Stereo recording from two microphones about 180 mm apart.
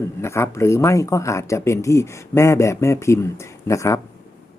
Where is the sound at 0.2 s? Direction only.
15° left (ahead or behind).